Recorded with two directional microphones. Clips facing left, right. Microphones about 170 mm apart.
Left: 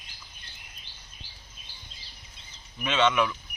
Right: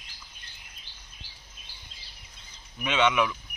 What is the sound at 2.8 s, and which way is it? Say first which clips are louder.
Speech: even; 10° right (ahead or behind).